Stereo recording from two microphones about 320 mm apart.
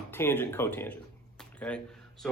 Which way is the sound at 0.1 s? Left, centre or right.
Centre.